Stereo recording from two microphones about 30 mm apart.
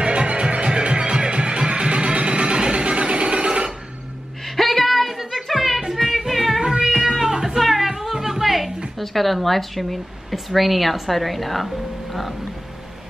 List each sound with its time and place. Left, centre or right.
0.0 s music: right
4.5 s a sound: centre
6.2 s music: centre
7.0 s a sound: centre
8.1 s music: centre
8.9 s speech: centre